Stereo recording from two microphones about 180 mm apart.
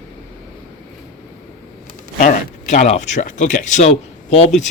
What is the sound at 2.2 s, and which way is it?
Speech, 45° left (ahead or behind).